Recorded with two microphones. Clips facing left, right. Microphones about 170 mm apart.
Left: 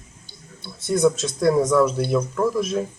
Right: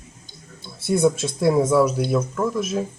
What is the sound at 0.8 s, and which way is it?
A man's voice, 10° right (ahead or behind).